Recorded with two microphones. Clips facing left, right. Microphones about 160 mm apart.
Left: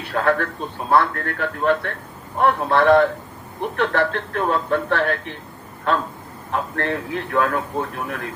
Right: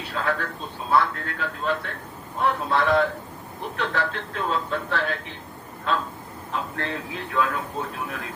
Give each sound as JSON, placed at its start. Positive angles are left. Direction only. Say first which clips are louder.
{"t": 0.1, "sound": "a man's voice", "louder": "left 7 dB", "side_deg": 60}
{"t": 6.5, "sound": "a man's voice", "louder": "left 6 dB", "side_deg": 60}